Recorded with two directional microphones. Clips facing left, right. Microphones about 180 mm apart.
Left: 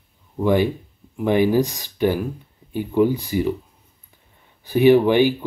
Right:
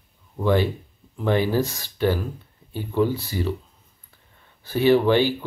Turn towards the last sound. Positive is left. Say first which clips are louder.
# left 4 dB
turn(degrees=15)  # may be behind; listen again after turning